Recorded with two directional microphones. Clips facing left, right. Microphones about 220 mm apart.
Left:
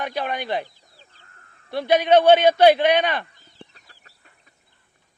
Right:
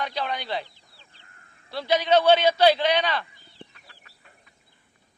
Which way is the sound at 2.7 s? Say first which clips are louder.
Left 5 dB; 55° left (ahead or behind).